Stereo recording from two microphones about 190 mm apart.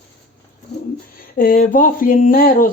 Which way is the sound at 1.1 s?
50° left (ahead or behind).